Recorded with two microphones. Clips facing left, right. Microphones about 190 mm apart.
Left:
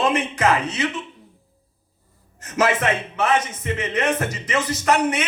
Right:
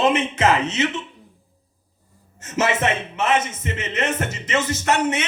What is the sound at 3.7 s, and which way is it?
Speech, 25° right (ahead or behind).